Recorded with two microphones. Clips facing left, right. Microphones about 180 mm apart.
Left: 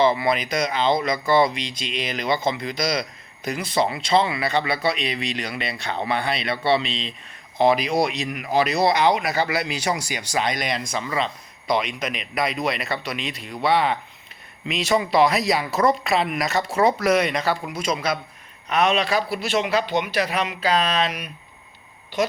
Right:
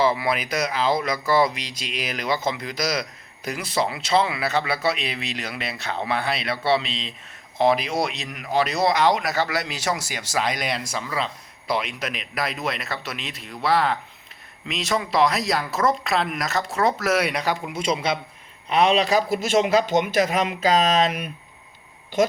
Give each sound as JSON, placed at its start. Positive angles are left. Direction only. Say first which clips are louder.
{"t": 0.0, "sound": "speech", "louder": "left 2 dB", "side_deg": -5}
{"t": 17.7, "sound": "a man's voice", "louder": "right 1 dB", "side_deg": -25}